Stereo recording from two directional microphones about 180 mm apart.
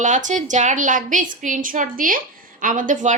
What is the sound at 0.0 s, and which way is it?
A woman's voice, 45° right (ahead or behind).